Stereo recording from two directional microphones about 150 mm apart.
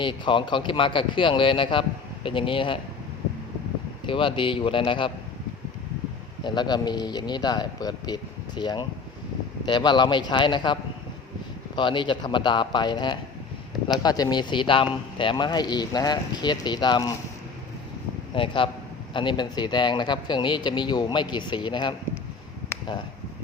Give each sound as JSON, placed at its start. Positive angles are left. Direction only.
{"t": 0.0, "sound": "a man's voice", "side_deg": 35}
{"t": 4.0, "sound": "a man's voice", "side_deg": 35}
{"t": 6.4, "sound": "a man's voice", "side_deg": 30}
{"t": 11.8, "sound": "a man's voice", "side_deg": 30}
{"t": 18.3, "sound": "a man's voice", "side_deg": 35}